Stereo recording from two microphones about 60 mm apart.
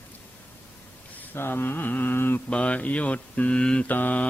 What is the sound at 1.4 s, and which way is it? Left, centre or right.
Mantra, left.